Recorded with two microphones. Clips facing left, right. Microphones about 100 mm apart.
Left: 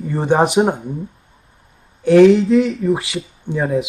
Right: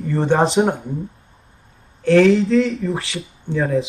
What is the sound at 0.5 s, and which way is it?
Speech, 5° left (ahead or behind).